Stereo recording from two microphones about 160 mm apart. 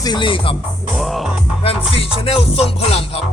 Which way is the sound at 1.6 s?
35° left (ahead or behind).